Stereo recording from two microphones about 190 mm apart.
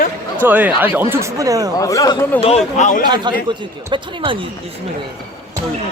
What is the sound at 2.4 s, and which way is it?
Speech, 35° left (ahead or behind).